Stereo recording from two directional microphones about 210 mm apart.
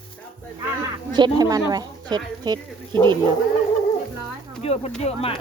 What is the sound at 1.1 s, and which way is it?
Speech, 20° right (ahead or behind).